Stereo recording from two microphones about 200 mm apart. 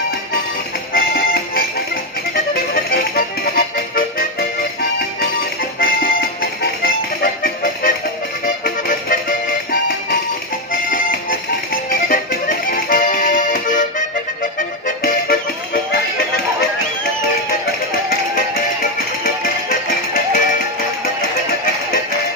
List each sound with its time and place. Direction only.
0.9 s music: 50° left (ahead or behind)
2.9 s music: 45° left (ahead or behind)
5.8 s music: 45° left (ahead or behind)
10.7 s music: 40° left (ahead or behind)
14.8 s music: 45° left (ahead or behind)